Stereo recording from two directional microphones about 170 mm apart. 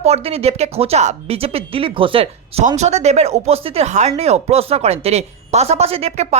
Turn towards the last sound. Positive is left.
turn(degrees=-35)  # may be behind; listen again after turning